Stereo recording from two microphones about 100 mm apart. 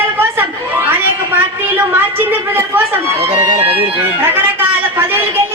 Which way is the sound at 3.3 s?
75° right (ahead or behind).